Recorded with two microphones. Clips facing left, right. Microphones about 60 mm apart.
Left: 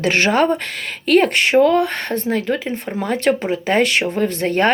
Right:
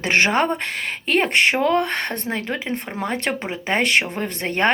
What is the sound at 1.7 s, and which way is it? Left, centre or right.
Speech, right.